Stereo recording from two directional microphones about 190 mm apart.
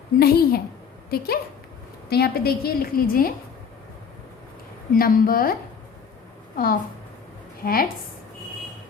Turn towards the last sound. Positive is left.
turn(degrees=50)  # may be behind; listen again after turning